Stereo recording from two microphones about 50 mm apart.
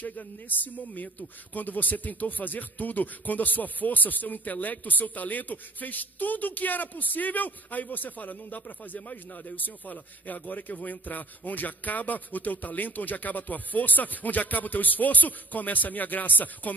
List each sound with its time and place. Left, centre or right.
0.0 s speech: left